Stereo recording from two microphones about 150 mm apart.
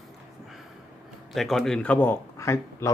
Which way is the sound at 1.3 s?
Centre (ahead or behind).